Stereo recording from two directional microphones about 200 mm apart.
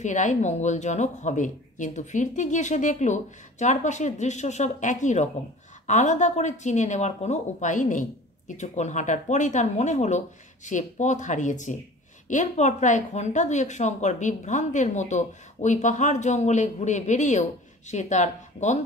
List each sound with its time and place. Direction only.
0.0 s a woman's voice: 35° left (ahead or behind)